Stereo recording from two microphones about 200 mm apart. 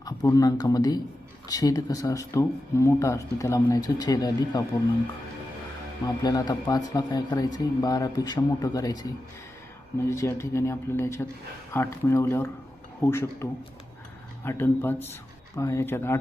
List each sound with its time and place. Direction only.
0.0 s speech: 15° left (ahead or behind)
6.2 s speech: 20° left (ahead or behind)